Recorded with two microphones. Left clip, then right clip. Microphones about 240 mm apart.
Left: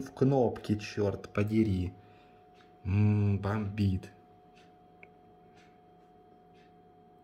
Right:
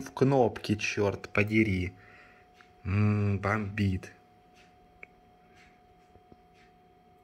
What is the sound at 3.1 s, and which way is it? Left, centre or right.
Speech, right.